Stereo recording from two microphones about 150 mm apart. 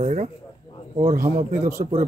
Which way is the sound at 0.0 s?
50° right (ahead or behind).